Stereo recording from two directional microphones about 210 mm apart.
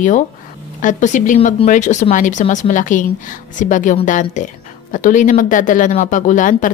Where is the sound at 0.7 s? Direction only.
35° left (ahead or behind).